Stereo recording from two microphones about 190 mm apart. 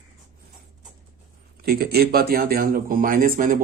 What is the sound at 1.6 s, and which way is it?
Speech, 55° right (ahead or behind).